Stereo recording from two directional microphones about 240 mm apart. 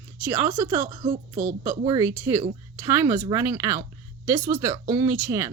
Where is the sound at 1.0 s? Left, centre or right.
Right.